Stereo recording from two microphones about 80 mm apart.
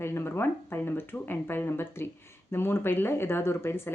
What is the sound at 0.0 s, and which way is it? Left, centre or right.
Speech, left.